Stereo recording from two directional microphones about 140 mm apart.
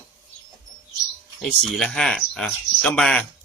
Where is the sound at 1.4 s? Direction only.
5° left (ahead or behind).